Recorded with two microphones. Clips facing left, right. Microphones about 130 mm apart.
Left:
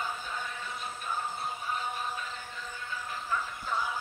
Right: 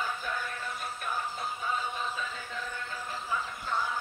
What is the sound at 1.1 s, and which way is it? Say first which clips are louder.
Music: right 1 dB; 70° right (ahead or behind).